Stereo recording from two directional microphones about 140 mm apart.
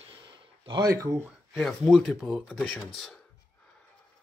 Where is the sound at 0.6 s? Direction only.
30° right (ahead or behind).